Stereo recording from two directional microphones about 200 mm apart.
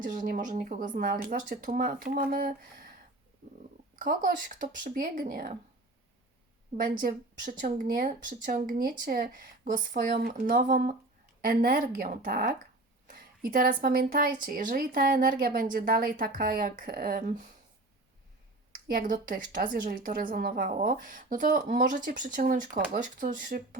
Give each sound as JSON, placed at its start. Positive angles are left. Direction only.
{"t": 0.0, "sound": "a woman's voice", "side_deg": -40}
{"t": 3.9, "sound": "a woman's voice", "side_deg": -45}
{"t": 7.6, "sound": "a woman's voice", "side_deg": -45}
{"t": 18.7, "sound": "a woman's voice", "side_deg": -45}